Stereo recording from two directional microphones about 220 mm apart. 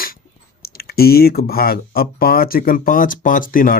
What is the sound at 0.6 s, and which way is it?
Speech, 45° left (ahead or behind).